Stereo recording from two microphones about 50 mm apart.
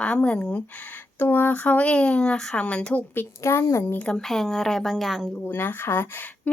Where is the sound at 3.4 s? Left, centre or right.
Left.